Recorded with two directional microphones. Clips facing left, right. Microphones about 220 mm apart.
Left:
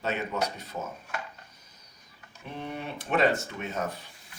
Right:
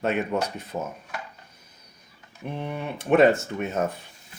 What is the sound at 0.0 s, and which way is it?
Speech, 55° right (ahead or behind).